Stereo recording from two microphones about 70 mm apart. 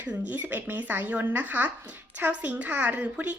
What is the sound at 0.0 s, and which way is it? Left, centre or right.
Speech, right.